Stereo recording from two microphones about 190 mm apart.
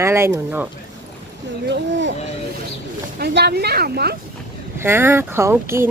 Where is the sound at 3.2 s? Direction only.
60° right (ahead or behind).